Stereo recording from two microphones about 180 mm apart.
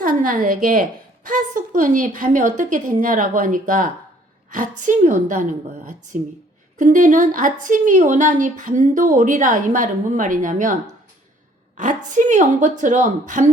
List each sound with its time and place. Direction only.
0.0 s a woman's voice: 50° right (ahead or behind)
11.8 s a woman's voice: 45° right (ahead or behind)